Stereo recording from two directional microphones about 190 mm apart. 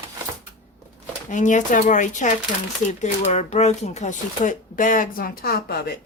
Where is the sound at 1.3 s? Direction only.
40° left (ahead or behind).